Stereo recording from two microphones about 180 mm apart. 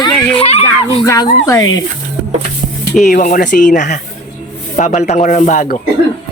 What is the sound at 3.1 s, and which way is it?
Speech, 45° left (ahead or behind).